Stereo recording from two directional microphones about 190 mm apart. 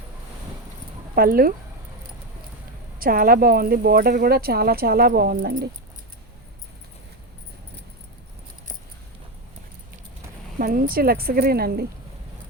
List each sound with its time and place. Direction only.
1.1 s speech: 50° right (ahead or behind)
3.0 s speech: 50° right (ahead or behind)
10.6 s speech: 50° right (ahead or behind)